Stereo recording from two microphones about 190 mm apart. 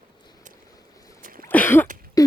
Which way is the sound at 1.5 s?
10° left (ahead or behind).